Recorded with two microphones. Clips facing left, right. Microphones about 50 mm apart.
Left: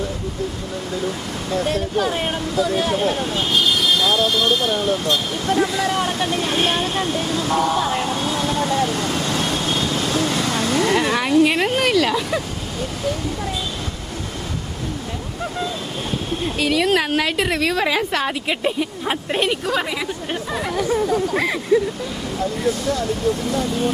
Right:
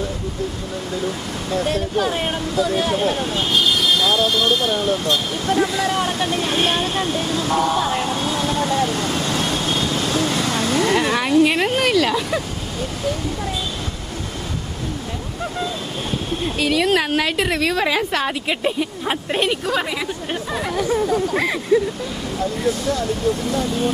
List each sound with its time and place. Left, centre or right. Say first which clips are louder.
1.0 s speech: even; right
13.1 s a sound: even; right
16.6 s a woman's voice: even; right
23.5 s a woman's voice: even; right